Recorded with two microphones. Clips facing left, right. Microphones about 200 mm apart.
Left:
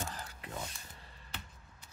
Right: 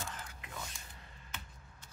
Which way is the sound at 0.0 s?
35° left (ahead or behind).